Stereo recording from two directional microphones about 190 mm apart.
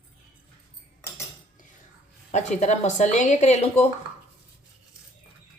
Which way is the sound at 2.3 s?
40° left (ahead or behind).